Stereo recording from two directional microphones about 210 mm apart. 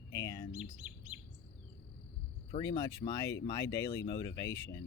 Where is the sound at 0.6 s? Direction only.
5° right (ahead or behind).